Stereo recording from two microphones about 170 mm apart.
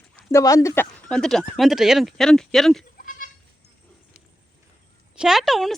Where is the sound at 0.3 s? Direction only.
20° left (ahead or behind); by 2.8 s centre (ahead or behind).